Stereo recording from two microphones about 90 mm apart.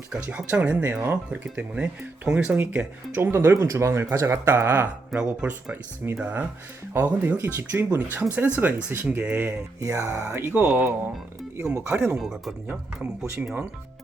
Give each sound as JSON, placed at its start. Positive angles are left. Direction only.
{"t": 0.1, "sound": "speech", "side_deg": -10}
{"t": 3.3, "sound": "speech", "side_deg": -30}
{"t": 5.1, "sound": "speech", "side_deg": 0}
{"t": 6.0, "sound": "speech", "side_deg": -20}
{"t": 9.8, "sound": "speech", "side_deg": -35}
{"t": 10.5, "sound": "speech", "side_deg": -20}
{"t": 11.5, "sound": "speech", "side_deg": -35}
{"t": 11.8, "sound": "speech", "side_deg": -20}
{"t": 12.1, "sound": "speech", "side_deg": -5}